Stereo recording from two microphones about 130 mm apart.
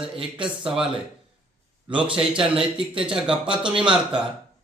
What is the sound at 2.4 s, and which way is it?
Speech, 5° right (ahead or behind).